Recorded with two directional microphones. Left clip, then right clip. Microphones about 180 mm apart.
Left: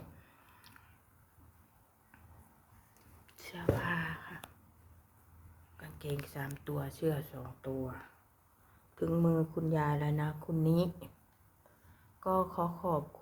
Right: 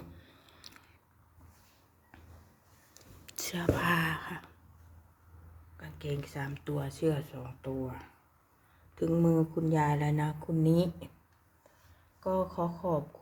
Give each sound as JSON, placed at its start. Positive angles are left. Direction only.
{"t": 0.7, "sound": "biting", "side_deg": -25}
{"t": 2.9, "sound": "whispering", "side_deg": -50}
{"t": 5.8, "sound": "speech", "side_deg": -5}
{"t": 12.2, "sound": "speech", "side_deg": 0}